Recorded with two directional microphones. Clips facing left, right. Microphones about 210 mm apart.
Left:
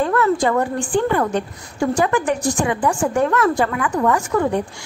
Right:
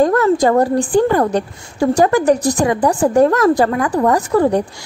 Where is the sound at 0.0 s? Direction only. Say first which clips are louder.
Right 5 dB; 40° right (ahead or behind).